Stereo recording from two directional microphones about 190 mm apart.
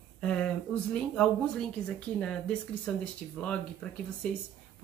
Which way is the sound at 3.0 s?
5° left (ahead or behind).